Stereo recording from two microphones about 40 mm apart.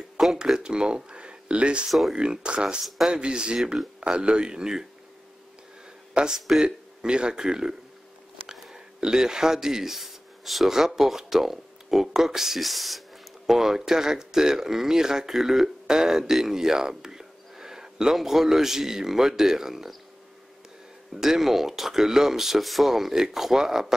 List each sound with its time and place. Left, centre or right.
0.2 s a sound: centre
0.6 s speech: right
1.9 s speech: centre
2.1 s speech: right
6.1 s speech: centre
21.1 s speech: centre